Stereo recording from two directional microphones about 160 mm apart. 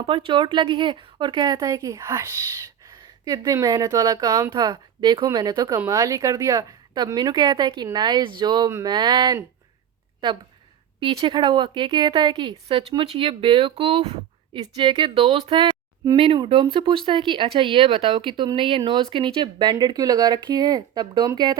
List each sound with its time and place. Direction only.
0.0 s speech: 35° right (ahead or behind)
11.0 s speech: 30° right (ahead or behind)